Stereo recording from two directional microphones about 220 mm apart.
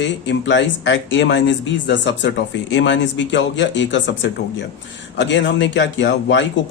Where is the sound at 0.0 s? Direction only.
55° left (ahead or behind).